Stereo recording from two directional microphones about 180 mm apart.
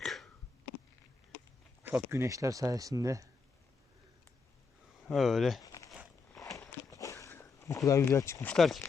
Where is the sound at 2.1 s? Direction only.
15° right (ahead or behind).